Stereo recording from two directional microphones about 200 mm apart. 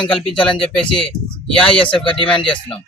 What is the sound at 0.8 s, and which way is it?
Speech, 25° left (ahead or behind).